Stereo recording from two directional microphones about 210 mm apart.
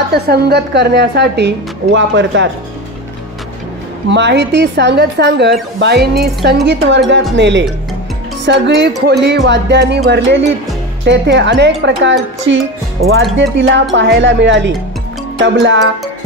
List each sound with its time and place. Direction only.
0.1 s a woman's voice: 50° right (ahead or behind)
4.1 s a woman's voice: 55° right (ahead or behind)